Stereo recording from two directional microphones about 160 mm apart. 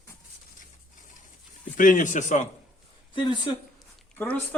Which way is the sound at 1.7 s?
55° left (ahead or behind).